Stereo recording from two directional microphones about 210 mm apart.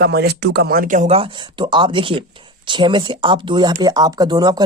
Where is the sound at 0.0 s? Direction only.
50° right (ahead or behind).